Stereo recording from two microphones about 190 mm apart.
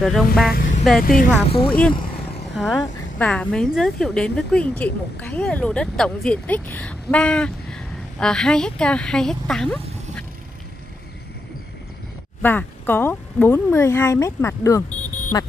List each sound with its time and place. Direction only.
0.0 s a woman's voice: centre (ahead or behind)
0.5 s speech: 45° left (ahead or behind)
2.5 s a woman's voice: centre (ahead or behind)
12.4 s speech: 10° left (ahead or behind)
14.9 s a sound: 40° left (ahead or behind)